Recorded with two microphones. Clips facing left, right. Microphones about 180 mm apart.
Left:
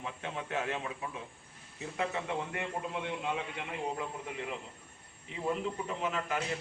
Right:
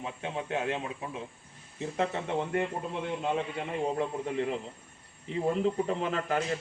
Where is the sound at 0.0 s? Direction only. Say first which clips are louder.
Right 4 dB; 20° right (ahead or behind).